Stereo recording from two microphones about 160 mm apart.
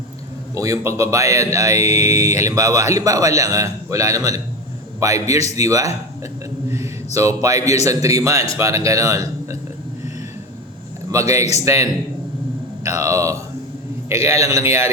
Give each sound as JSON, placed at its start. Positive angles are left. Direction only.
{"t": 0.5, "sound": "a man's voice", "side_deg": -20}
{"t": 11.1, "sound": "speech", "side_deg": -20}